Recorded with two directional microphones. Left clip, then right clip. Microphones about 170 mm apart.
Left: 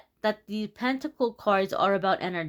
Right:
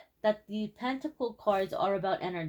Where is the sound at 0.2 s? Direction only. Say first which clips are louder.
Left 1 dB; 40° left (ahead or behind).